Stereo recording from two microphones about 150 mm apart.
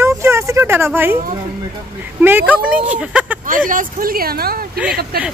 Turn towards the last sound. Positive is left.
turn(degrees=-90)